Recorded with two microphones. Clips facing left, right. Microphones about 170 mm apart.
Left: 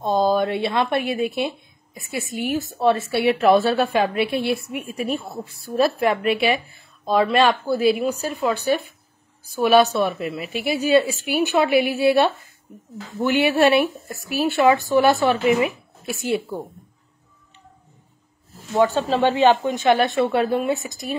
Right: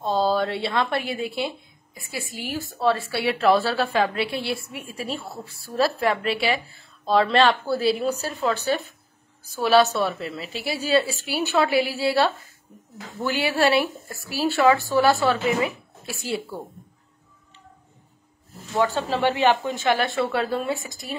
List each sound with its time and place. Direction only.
0.0 s a woman's voice: 15° left (ahead or behind)
18.7 s a woman's voice: 20° left (ahead or behind)